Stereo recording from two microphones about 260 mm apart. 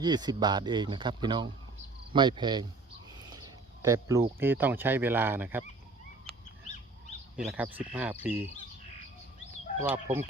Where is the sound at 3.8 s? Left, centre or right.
Centre.